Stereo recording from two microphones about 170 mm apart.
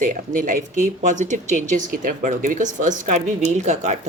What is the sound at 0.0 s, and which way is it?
Speech, 50° right (ahead or behind).